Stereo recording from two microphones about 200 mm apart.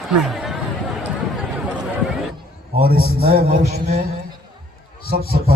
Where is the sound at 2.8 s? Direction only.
50° right (ahead or behind).